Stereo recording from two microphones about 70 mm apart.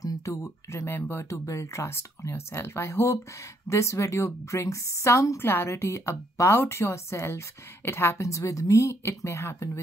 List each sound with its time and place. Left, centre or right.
0.0 s speech: left
0.8 s a woman's voice: left
1.3 s a woman's voice: left
5.4 s a woman's voice: left